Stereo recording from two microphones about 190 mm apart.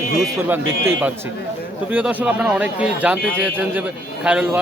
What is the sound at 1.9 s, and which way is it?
A man's voice, 10° right (ahead or behind).